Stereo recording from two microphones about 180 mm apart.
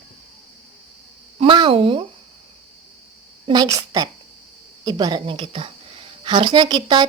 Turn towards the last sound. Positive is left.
turn(degrees=-25)  # may be behind; listen again after turning